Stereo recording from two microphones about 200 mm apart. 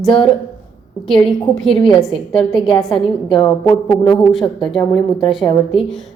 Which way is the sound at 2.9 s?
25° left (ahead or behind).